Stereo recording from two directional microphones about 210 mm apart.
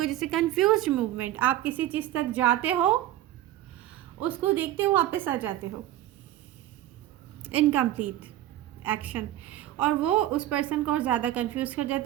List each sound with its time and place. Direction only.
0.0 s a woman's voice: centre (ahead or behind)
7.4 s a woman's voice: 10° right (ahead or behind)